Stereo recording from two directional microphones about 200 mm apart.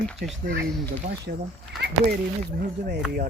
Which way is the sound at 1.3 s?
55° right (ahead or behind).